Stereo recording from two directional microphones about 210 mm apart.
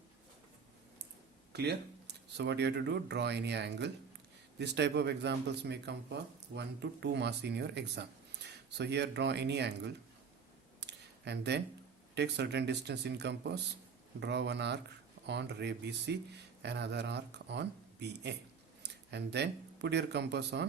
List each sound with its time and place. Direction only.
1.5 s speech: 50° right (ahead or behind)
10.8 s a sound: 55° right (ahead or behind)
12.1 s speech: 55° right (ahead or behind)